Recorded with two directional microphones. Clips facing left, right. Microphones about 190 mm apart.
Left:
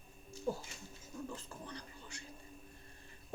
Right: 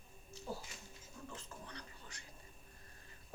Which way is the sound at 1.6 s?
30° left (ahead or behind).